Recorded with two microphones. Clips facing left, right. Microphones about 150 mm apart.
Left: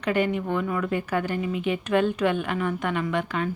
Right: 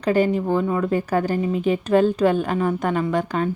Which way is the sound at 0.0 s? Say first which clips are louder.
Right 5 dB; 35° right (ahead or behind).